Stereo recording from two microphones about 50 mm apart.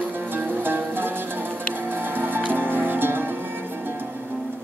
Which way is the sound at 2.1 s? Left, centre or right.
Right.